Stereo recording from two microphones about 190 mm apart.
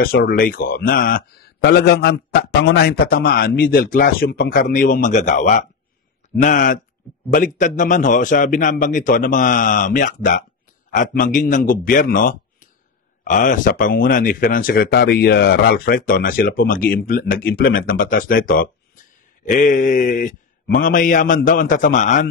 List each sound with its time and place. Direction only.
0.3 s speech: 50° left (ahead or behind)